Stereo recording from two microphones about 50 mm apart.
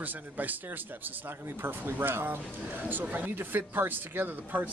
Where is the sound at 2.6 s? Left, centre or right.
Right.